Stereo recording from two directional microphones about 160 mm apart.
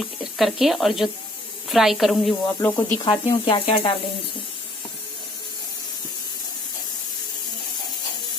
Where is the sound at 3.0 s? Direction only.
30° left (ahead or behind).